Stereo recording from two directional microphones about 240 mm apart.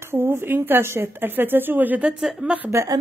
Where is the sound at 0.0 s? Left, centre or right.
Centre.